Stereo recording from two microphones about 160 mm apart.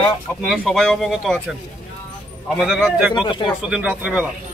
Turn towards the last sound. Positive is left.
turn(degrees=-10)  # may be behind; listen again after turning